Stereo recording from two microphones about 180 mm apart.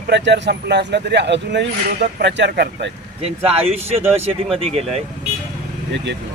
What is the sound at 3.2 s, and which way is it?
Speech, 35° right (ahead or behind).